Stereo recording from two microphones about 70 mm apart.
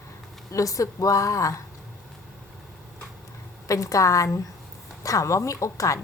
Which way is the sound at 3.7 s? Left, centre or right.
Left.